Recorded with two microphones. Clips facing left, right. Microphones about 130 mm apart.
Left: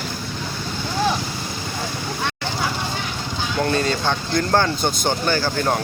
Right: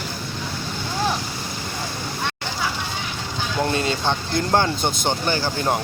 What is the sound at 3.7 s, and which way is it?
Speech, 20° right (ahead or behind).